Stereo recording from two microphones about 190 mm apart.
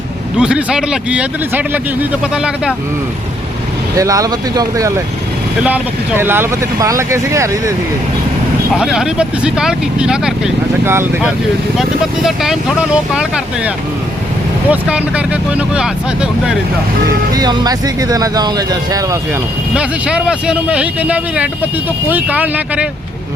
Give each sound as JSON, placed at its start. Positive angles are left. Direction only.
{"t": 0.3, "sound": "speech", "side_deg": -5}
{"t": 3.9, "sound": "speech", "side_deg": -15}
{"t": 8.7, "sound": "speech", "side_deg": -5}
{"t": 17.3, "sound": "speech", "side_deg": -20}
{"t": 19.7, "sound": "speech", "side_deg": -5}